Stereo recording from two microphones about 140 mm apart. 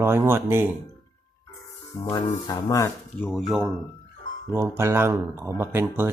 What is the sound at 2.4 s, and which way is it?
Speech, 25° left (ahead or behind).